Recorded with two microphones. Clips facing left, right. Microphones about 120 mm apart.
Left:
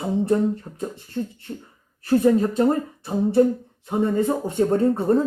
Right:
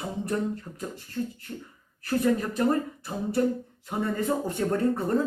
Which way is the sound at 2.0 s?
25° left (ahead or behind).